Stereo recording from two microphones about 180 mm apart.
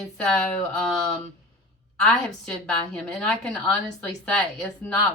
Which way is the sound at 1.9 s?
5° left (ahead or behind).